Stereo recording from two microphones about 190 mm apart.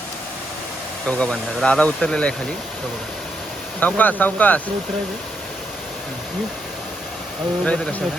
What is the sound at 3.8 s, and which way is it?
Speech, 10° left (ahead or behind).